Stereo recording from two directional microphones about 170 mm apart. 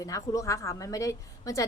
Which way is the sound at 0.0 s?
20° left (ahead or behind).